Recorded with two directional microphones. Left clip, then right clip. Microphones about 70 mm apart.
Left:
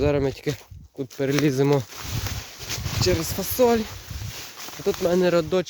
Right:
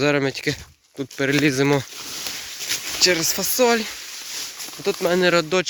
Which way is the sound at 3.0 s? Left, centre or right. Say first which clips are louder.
Right 5 dB; centre.